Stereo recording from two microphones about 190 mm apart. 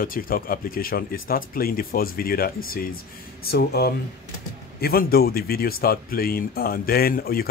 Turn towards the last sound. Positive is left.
turn(degrees=50)  # may be behind; listen again after turning